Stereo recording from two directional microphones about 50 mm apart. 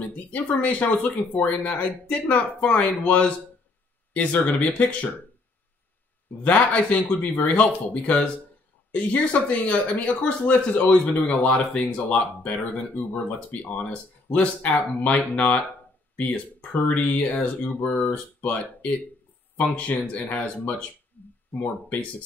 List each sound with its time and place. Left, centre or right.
0.1 s speech: left
6.4 s speech: left
19.8 s speech: left